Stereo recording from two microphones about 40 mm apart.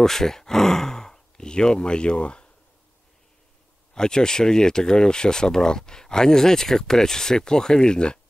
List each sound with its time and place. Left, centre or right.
0.0 s speech: centre; by 2.5 s left
3.9 s speech: centre